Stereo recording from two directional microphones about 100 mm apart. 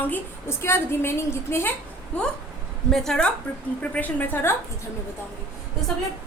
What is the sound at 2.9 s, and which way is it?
A woman's voice, 5° left (ahead or behind).